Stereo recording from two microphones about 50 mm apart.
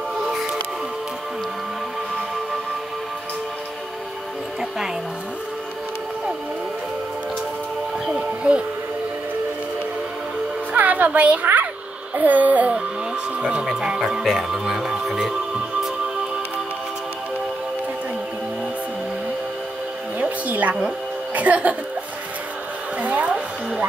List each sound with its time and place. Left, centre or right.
0.2 s music: centre
8.1 s music: centre
10.7 s music: right
11.4 s a sound: right
12.2 s music: right
13.4 s speech: centre
13.7 s music: centre
20.2 s music: right
21.4 s speech: right
22.9 s a sound: right